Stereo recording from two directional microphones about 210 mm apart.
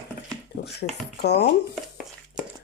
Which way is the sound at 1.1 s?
50° left (ahead or behind).